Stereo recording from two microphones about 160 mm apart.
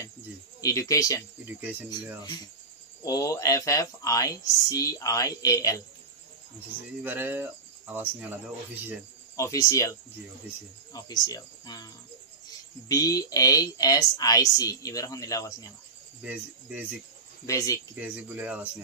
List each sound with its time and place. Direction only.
0.6 s speech: 20° left (ahead or behind)
1.6 s speech: 10° right (ahead or behind)
3.1 s speech: 20° left (ahead or behind)
7.0 s speech: 10° right (ahead or behind)
9.4 s speech: 20° left (ahead or behind)
16.2 s speech: 10° right (ahead or behind)
17.5 s speech: 20° left (ahead or behind)
17.9 s speech: 10° right (ahead or behind)